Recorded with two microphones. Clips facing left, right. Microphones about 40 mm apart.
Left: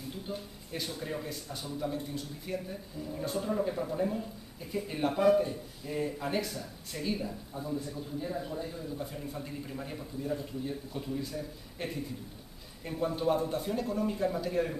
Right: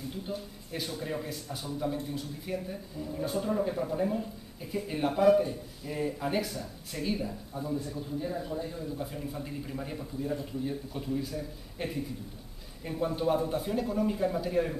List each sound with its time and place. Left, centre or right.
0.3 s speech: centre